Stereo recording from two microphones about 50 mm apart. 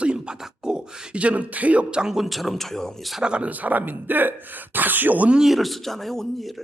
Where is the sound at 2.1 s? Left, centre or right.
Centre.